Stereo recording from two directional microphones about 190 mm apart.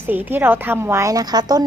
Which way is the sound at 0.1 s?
10° right (ahead or behind).